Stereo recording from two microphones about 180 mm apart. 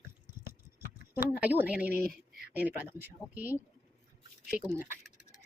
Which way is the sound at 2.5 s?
10° right (ahead or behind).